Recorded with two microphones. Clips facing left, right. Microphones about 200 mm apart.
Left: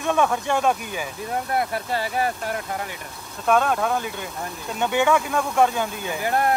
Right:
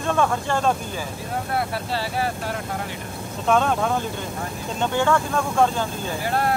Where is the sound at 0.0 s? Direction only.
10° left (ahead or behind).